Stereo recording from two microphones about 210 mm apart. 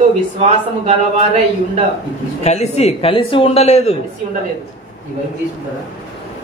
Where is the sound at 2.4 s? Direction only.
30° left (ahead or behind).